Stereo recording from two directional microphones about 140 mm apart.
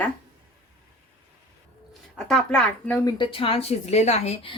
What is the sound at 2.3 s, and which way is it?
Speech, 5° left (ahead or behind).